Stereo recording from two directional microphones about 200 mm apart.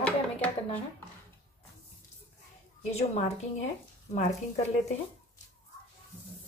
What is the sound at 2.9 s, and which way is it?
Speech, 30° left (ahead or behind).